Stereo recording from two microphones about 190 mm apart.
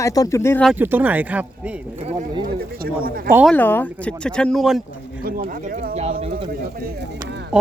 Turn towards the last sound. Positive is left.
turn(degrees=-60)  # may be behind; listen again after turning